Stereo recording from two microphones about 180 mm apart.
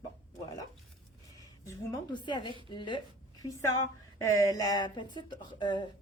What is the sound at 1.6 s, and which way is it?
A woman's voice, 20° left (ahead or behind).